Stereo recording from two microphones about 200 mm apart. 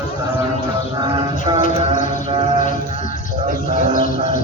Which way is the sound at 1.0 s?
20° right (ahead or behind).